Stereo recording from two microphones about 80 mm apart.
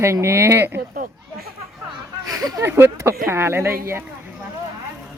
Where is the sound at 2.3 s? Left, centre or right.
Right.